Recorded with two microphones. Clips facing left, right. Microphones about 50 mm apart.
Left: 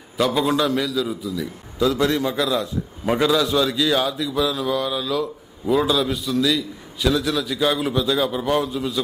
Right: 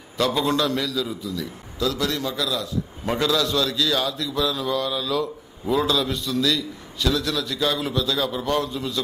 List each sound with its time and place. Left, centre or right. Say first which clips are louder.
0.2 s a man's voice: left 2 dB; centre
1.8 s a man's voice: left 5 dB; left
3.1 s a man's voice: left 4 dB; centre